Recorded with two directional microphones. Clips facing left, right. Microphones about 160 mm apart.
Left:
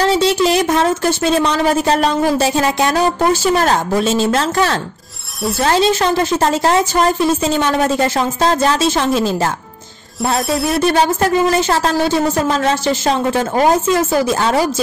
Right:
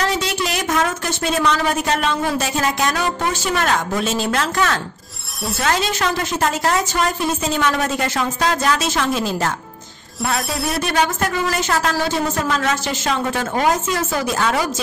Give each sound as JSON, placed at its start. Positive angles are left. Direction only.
{"t": 0.0, "sound": "speech", "side_deg": 30}
{"t": 10.5, "sound": "speech", "side_deg": 0}
{"t": 10.8, "sound": "speech", "side_deg": 30}